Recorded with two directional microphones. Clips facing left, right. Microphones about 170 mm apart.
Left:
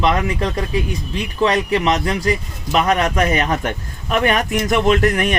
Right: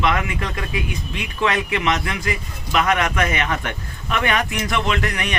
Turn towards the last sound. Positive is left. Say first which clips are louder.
# left 7 dB
turn(degrees=45)  # may be behind; listen again after turning